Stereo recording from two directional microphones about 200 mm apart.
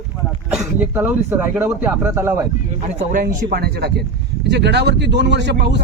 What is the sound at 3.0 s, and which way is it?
Speech, 40° right (ahead or behind).